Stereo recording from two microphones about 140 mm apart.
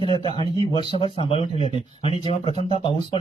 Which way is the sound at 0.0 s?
35° left (ahead or behind).